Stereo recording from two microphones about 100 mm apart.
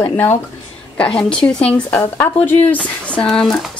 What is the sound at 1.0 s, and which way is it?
A woman's voice, 10° left (ahead or behind).